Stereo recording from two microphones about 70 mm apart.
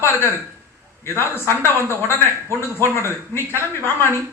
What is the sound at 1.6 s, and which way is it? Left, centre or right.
Speech, left.